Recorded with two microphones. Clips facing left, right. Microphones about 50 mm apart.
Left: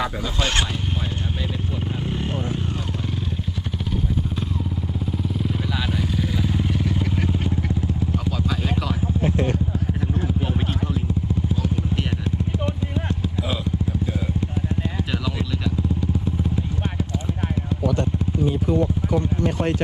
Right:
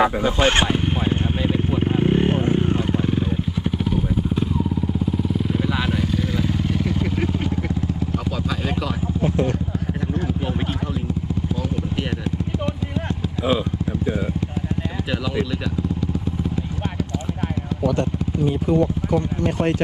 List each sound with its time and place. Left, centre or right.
0.0 s vehicle: right
5.1 s vehicle: centre
5.6 s vehicle: centre
6.0 s motorcycle: centre
6.8 s vehicle: centre